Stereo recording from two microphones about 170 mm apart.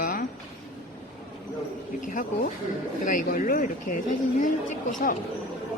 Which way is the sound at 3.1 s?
50° left (ahead or behind).